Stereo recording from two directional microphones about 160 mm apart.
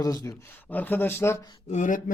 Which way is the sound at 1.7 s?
55° left (ahead or behind).